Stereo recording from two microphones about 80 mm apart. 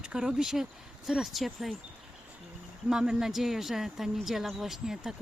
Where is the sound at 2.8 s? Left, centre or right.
Centre.